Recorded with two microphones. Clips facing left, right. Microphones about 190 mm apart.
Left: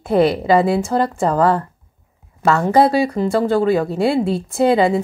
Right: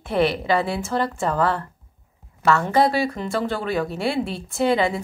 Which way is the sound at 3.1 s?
35° left (ahead or behind).